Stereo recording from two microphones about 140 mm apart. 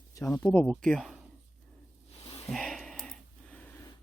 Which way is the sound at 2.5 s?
Centre (ahead or behind).